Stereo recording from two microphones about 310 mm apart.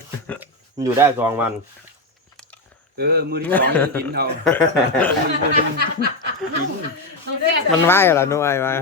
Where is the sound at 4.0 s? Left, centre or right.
Right.